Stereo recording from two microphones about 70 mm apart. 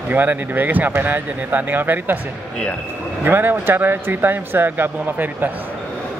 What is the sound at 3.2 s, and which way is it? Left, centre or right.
A man's voice, right.